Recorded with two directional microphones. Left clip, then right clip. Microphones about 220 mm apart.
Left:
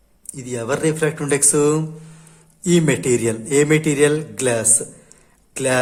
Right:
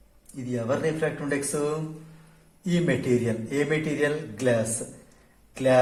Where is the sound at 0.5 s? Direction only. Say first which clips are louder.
Left 6 dB; 50° left (ahead or behind).